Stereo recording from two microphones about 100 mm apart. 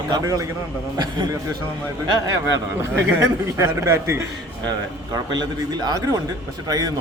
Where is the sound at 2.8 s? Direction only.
25° right (ahead or behind).